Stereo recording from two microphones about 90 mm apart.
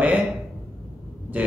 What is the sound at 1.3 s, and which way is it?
Speech, 20° right (ahead or behind).